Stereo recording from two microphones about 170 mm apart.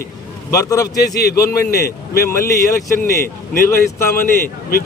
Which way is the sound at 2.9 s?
60° left (ahead or behind).